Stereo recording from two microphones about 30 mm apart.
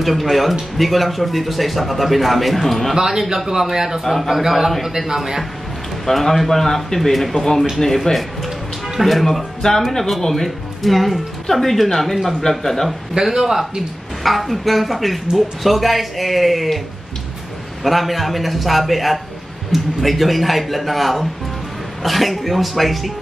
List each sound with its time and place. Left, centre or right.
0.0 s speech: centre
3.0 s a man's voice: centre
4.0 s speech: centre
4.3 s a man's voice: centre
6.0 s a man's voice: centre
12.4 s a man's voice: centre
13.1 s a man's voice: centre
14.2 s speech: centre
17.8 s speech: centre